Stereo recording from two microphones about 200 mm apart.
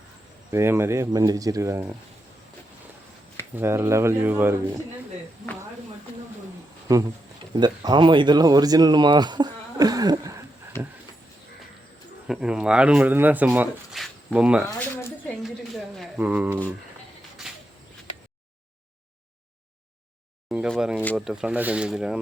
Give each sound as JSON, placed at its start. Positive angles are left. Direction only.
{"t": 0.5, "sound": "speech", "side_deg": -10}
{"t": 3.5, "sound": "speech", "side_deg": -10}
{"t": 6.9, "sound": "speech", "side_deg": -15}
{"t": 12.3, "sound": "speech", "side_deg": -5}
{"t": 15.4, "sound": "a sound", "side_deg": 0}
{"t": 20.5, "sound": "speech", "side_deg": 0}